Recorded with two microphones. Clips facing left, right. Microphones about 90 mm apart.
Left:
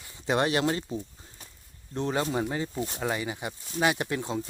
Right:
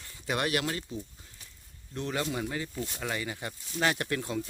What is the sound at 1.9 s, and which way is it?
Speech, 30° left (ahead or behind).